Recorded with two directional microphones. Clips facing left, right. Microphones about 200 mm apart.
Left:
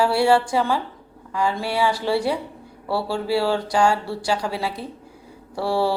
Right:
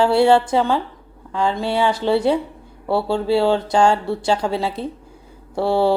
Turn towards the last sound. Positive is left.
turn(degrees=-25)  # may be behind; listen again after turning